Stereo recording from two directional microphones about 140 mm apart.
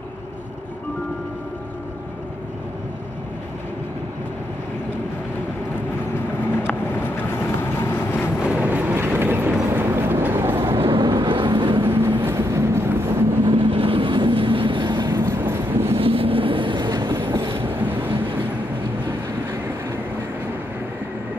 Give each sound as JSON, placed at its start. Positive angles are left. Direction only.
{"t": 6.6, "sound": "vehicle", "side_deg": 15}
{"t": 8.5, "sound": "train", "side_deg": -10}
{"t": 10.8, "sound": "vehicle", "side_deg": -35}
{"t": 11.8, "sound": "vehicle", "side_deg": -15}
{"t": 13.5, "sound": "vehicle", "side_deg": -40}
{"t": 15.1, "sound": "vehicle", "side_deg": -15}
{"t": 16.0, "sound": "vehicle", "side_deg": -40}
{"t": 17.3, "sound": "train", "side_deg": -40}
{"t": 17.6, "sound": "train", "side_deg": -15}